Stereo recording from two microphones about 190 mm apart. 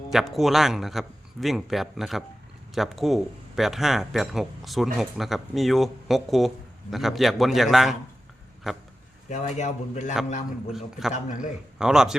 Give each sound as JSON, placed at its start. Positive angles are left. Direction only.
{"t": 0.1, "sound": "speech", "side_deg": 0}
{"t": 9.3, "sound": "a man's voice", "side_deg": 40}
{"t": 10.7, "sound": "speech", "side_deg": 0}